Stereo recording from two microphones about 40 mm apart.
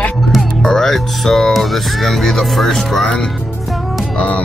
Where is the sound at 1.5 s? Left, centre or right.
Centre.